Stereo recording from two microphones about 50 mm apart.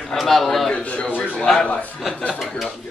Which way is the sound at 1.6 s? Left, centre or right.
Left.